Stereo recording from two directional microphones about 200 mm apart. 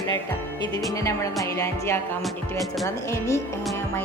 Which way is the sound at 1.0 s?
15° left (ahead or behind).